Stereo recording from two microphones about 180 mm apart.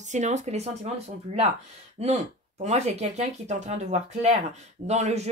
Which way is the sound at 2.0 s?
35° right (ahead or behind).